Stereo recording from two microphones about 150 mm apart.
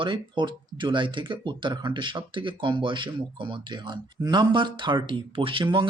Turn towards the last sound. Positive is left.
turn(degrees=-35)  # may be behind; listen again after turning